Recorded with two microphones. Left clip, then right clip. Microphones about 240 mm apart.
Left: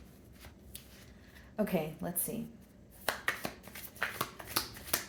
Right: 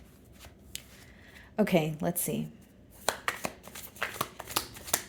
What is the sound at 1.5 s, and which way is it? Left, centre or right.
Speech, right.